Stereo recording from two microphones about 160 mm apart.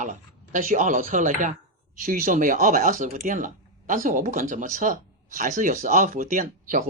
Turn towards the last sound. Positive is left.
turn(degrees=-60)  # may be behind; listen again after turning